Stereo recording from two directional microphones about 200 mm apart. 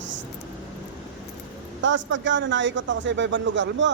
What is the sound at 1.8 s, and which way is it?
A man's voice, 65° right (ahead or behind).